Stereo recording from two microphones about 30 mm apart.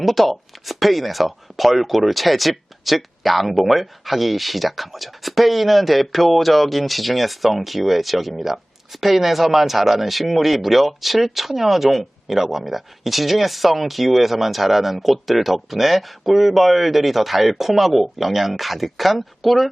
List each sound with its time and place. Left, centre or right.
0.0 s speech: centre